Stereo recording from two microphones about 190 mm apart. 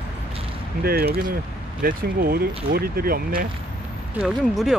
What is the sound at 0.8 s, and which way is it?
Speech, 55° right (ahead or behind).